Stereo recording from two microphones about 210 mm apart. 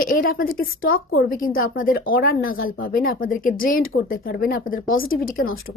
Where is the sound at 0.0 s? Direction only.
40° left (ahead or behind).